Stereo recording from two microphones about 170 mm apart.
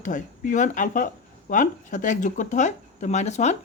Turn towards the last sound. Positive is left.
turn(degrees=45)  # may be behind; listen again after turning